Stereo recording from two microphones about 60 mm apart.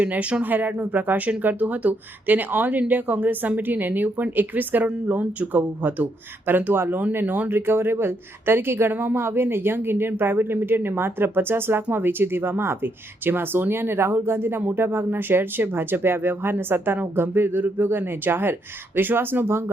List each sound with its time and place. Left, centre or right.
0.0 s speech: right